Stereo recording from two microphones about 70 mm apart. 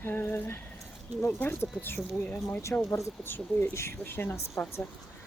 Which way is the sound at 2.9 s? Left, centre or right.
Left.